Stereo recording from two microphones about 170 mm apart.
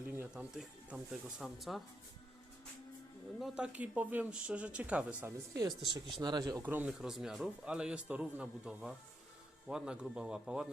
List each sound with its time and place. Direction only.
0.2 s speech: 5° right (ahead or behind)
3.4 s speech: 5° right (ahead or behind)
5.5 s speech: 25° right (ahead or behind)
6.6 s speech: 10° right (ahead or behind)